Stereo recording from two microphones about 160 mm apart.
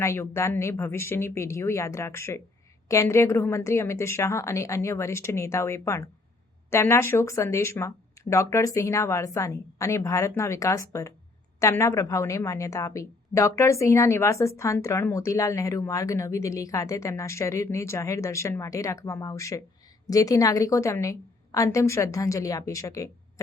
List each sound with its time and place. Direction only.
0.0 s a woman's voice: 15° left (ahead or behind)